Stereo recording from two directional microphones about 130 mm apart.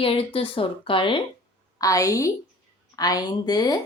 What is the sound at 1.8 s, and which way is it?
A woman's voice, 25° left (ahead or behind).